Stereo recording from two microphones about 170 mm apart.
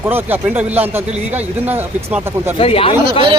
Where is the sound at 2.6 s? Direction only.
35° left (ahead or behind).